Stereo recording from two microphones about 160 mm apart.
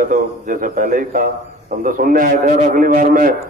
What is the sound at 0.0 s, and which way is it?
A man's voice, 55° right (ahead or behind).